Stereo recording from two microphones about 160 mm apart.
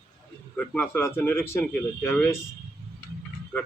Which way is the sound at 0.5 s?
5° left (ahead or behind).